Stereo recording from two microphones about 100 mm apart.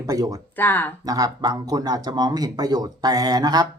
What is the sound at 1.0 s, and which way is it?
Speech, 40° right (ahead or behind).